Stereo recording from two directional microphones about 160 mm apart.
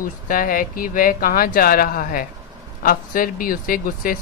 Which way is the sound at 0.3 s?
60° left (ahead or behind).